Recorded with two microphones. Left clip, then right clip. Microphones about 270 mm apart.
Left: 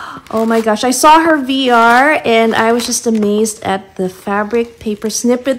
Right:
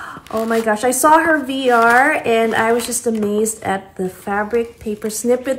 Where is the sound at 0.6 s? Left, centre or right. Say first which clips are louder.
Left 4 dB; centre.